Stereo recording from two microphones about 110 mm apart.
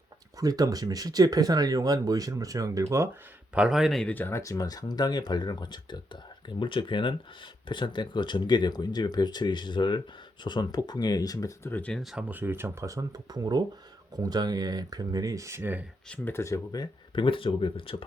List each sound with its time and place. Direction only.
0.3 s speech: 35° right (ahead or behind)
3.5 s speech: 5° right (ahead or behind)
4.0 s speech: 15° left (ahead or behind)
11.7 s speech: 10° left (ahead or behind)
12.1 s speech: 15° right (ahead or behind)
16.0 s speech: 15° left (ahead or behind)
16.7 s speech: 40° left (ahead or behind)
17.2 s speech: 55° left (ahead or behind)